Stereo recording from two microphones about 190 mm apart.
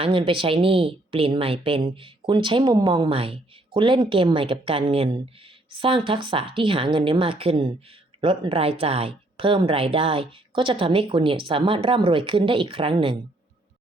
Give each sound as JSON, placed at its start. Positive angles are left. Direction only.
{"t": 0.0, "sound": "speech", "side_deg": -25}